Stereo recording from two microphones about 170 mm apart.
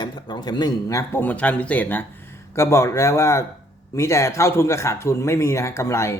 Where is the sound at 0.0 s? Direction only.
25° left (ahead or behind).